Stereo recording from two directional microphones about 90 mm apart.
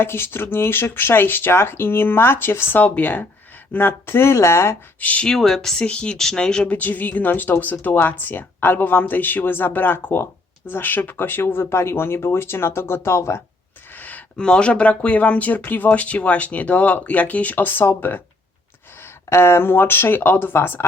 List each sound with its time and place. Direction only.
0.0 s speech: 25° left (ahead or behind)
5.0 s speech: 15° left (ahead or behind); by 13.4 s 30° left (ahead or behind)
13.9 s speech: 20° left (ahead or behind)